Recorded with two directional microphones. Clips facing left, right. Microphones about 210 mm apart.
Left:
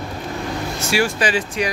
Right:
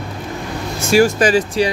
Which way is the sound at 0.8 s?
45° right (ahead or behind).